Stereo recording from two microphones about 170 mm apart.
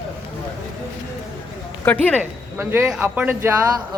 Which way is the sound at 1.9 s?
10° left (ahead or behind).